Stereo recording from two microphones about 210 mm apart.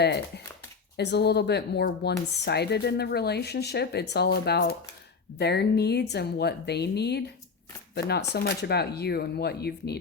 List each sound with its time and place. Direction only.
0.0 s speech: 50° left (ahead or behind)